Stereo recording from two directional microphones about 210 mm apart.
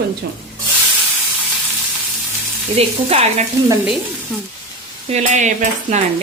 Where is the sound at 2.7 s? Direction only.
30° right (ahead or behind).